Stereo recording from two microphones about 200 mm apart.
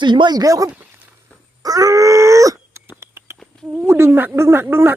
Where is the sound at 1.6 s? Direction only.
20° right (ahead or behind).